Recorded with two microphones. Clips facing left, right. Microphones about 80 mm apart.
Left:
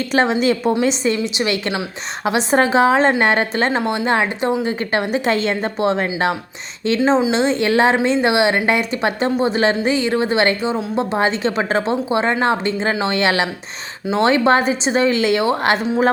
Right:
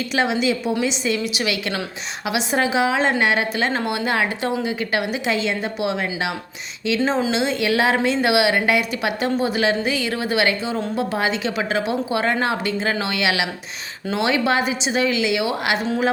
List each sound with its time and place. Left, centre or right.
0.1 s a woman's voice: left
2.2 s a woman's voice: left
3.7 s speech: left
4.6 s a woman's voice: left
7.0 s a woman's voice: left